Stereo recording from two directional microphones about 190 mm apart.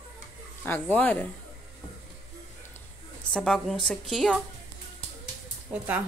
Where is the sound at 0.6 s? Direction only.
10° left (ahead or behind).